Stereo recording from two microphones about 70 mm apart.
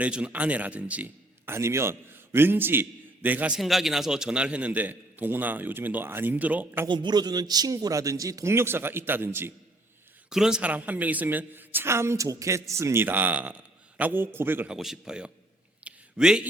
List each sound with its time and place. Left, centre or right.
0.0 s a woman's voice: centre
1.5 s a man's voice: right
3.6 s a woman's voice: centre; by 6.8 s right
6.8 s a man's voice: right
8.4 s a man's voice: right
10.2 s a man's voice: centre
10.6 s a woman's voice: right
14.7 s a man's voice: centre
15.8 s a sound: centre